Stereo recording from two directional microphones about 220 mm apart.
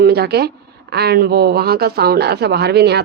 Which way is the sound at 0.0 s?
45° right (ahead or behind).